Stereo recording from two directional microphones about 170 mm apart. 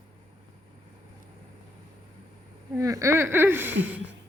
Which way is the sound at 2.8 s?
20° right (ahead or behind).